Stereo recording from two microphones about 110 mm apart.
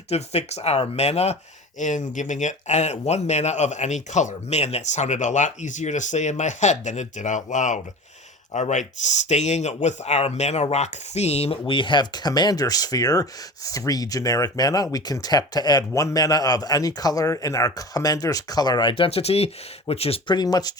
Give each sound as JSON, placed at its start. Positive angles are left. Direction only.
{"t": 0.1, "sound": "speech", "side_deg": 75}
{"t": 1.8, "sound": "speech", "side_deg": 90}
{"t": 20.2, "sound": "speech", "side_deg": 40}